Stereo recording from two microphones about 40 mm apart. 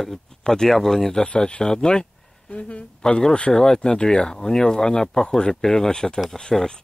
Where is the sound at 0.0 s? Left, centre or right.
Centre.